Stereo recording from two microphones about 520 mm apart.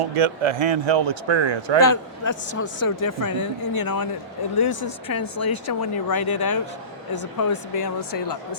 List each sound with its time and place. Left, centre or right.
0.0 s speech: right
1.8 s speech: left
2.3 s speech: left